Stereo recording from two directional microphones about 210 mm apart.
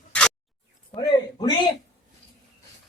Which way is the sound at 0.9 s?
20° left (ahead or behind).